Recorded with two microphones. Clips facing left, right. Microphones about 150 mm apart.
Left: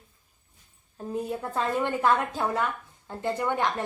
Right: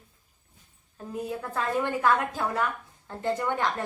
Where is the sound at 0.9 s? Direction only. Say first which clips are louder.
Left 2 dB; 25° left (ahead or behind).